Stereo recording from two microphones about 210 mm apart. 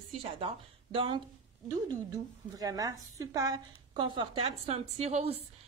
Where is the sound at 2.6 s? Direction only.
15° right (ahead or behind).